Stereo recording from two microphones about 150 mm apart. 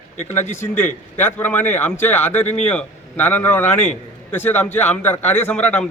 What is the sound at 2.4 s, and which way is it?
Speech, 50° left (ahead or behind).